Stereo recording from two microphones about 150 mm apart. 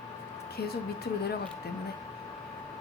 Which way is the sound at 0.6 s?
90° left.